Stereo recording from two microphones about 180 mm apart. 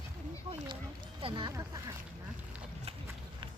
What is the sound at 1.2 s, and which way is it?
Speech, 25° right (ahead or behind).